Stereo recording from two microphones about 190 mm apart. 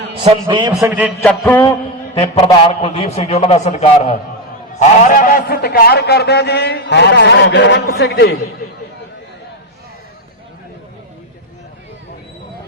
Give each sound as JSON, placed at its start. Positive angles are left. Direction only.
{"t": 0.2, "sound": "a man's voice", "side_deg": -25}
{"t": 0.8, "sound": "a man's voice", "side_deg": -10}
{"t": 1.0, "sound": "music", "side_deg": 5}
{"t": 2.1, "sound": "a man's voice", "side_deg": 25}
{"t": 4.8, "sound": "a man's voice", "side_deg": 45}